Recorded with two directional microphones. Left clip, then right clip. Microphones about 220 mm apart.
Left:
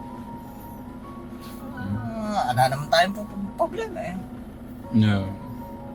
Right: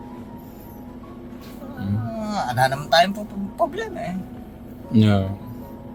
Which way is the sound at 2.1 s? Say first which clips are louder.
Left 1 dB; 35° right (ahead or behind).